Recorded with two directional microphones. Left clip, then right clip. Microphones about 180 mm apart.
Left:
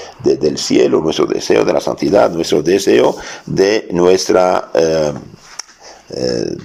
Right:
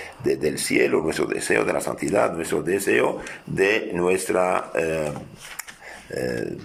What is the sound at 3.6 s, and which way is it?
Speech, 25° left (ahead or behind).